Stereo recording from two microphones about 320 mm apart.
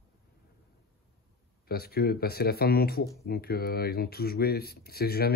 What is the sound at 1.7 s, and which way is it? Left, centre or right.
Speech, left.